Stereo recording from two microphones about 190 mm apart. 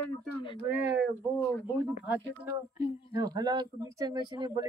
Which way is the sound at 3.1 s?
20° right (ahead or behind).